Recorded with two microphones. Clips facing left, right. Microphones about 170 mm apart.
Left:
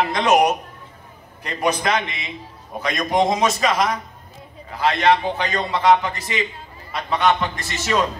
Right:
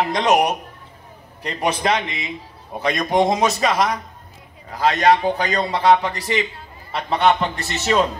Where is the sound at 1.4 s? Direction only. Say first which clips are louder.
Even; 35° right (ahead or behind).